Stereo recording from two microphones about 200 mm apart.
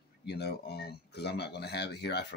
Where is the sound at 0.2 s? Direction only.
55° left (ahead or behind).